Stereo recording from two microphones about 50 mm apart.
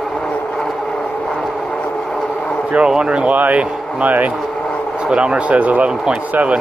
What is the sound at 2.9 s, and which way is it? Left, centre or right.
Speech, centre.